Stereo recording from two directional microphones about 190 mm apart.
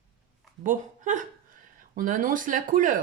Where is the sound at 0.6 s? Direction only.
40° right (ahead or behind).